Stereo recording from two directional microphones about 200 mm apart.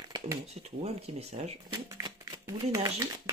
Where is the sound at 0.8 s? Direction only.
30° right (ahead or behind).